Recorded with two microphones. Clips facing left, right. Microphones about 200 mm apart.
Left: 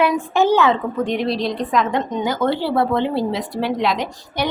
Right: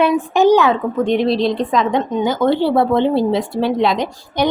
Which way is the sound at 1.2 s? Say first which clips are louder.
Right 5 dB; centre (ahead or behind).